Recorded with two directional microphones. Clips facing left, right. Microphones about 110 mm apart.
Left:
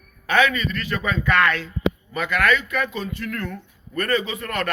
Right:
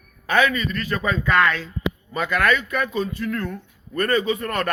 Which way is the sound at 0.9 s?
35° right (ahead or behind).